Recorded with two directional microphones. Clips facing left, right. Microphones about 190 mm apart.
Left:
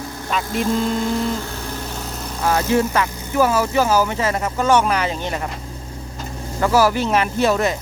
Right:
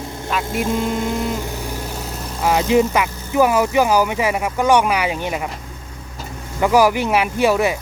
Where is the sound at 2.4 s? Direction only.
15° right (ahead or behind).